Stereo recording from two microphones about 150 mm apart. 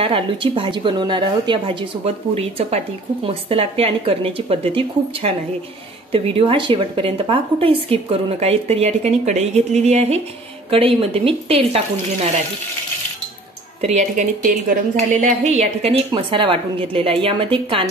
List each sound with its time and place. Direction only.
0.0 s a woman's voice: 35° right (ahead or behind)
13.7 s a woman's voice: 50° right (ahead or behind)